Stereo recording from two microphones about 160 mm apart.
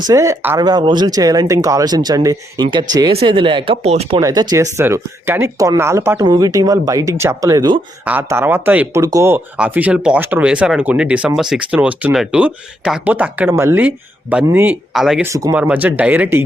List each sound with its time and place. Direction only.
0.1 s speech: 20° right (ahead or behind); by 4.2 s 40° right (ahead or behind)
4.2 s speech: 25° right (ahead or behind)
14.9 s speech: centre (ahead or behind)
15.2 s speech: 20° right (ahead or behind)